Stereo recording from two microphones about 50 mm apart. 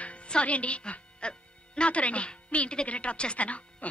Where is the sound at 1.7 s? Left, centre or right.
Left.